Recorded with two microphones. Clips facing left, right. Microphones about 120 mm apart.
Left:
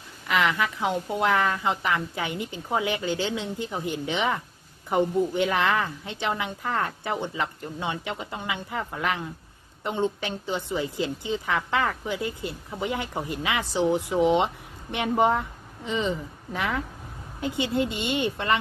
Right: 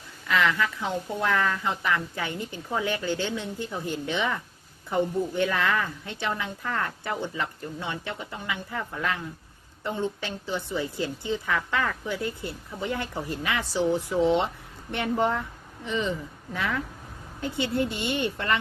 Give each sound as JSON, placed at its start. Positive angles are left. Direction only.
{"t": 0.3, "sound": "a woman's voice", "side_deg": 20}